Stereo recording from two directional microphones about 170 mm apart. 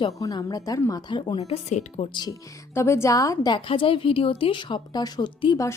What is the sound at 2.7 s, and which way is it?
Speech, 15° left (ahead or behind).